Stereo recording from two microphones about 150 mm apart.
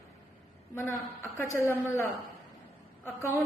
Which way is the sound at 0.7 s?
20° left (ahead or behind).